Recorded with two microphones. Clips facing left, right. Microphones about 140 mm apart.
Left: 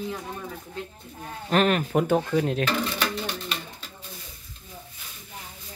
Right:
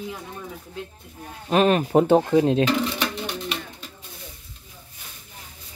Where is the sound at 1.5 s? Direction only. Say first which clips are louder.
Right 3 dB; 15° right (ahead or behind).